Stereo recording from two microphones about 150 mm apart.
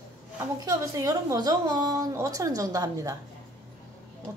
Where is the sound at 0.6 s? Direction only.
20° right (ahead or behind).